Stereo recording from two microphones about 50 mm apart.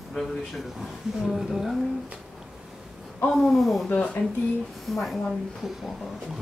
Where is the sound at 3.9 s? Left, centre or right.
Left.